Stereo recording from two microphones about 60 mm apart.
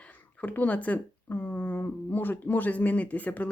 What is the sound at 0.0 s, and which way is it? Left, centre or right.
Speech, left.